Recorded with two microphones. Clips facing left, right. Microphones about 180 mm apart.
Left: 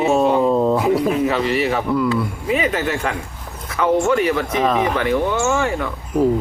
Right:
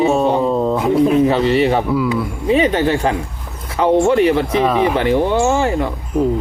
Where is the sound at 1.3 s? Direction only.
30° right (ahead or behind).